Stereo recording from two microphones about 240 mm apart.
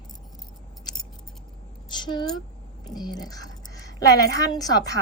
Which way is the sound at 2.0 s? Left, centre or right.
Centre.